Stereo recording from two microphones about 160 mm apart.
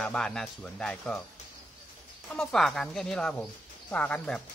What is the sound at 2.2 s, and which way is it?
Speech, 5° left (ahead or behind).